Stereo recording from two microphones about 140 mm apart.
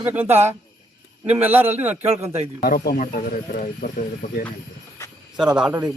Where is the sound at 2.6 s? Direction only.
90° left.